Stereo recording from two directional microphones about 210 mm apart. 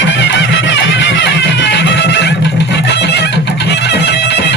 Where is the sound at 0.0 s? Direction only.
60° left (ahead or behind).